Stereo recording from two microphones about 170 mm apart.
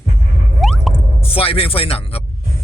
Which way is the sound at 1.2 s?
35° left (ahead or behind).